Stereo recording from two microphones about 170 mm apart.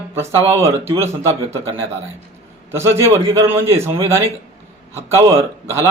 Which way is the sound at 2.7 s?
15° right (ahead or behind).